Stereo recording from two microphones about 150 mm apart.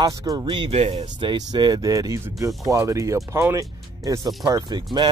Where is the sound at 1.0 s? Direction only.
30° right (ahead or behind).